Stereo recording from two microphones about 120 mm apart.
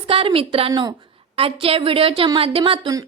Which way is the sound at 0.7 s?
35° right (ahead or behind).